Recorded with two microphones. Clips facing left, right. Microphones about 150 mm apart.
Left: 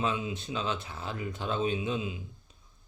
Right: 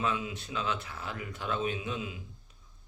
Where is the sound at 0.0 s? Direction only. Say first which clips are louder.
Left 1 dB; 25° left (ahead or behind).